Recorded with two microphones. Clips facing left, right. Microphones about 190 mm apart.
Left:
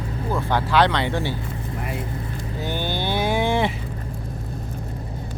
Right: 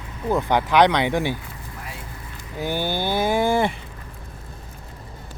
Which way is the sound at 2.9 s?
50° right (ahead or behind).